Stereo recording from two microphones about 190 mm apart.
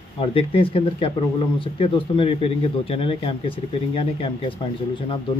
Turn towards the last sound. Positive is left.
turn(degrees=25)  # may be behind; listen again after turning